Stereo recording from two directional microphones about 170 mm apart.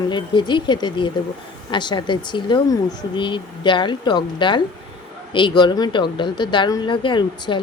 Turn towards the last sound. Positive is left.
turn(degrees=25)  # may be behind; listen again after turning